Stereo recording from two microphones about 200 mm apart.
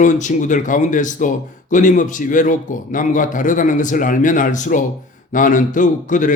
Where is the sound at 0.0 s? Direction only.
40° left (ahead or behind).